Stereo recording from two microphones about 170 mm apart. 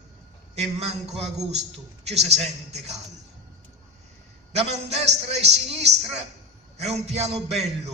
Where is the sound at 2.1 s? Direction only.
40° right (ahead or behind).